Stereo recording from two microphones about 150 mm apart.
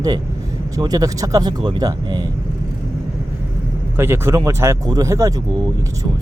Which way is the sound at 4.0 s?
15° right (ahead or behind).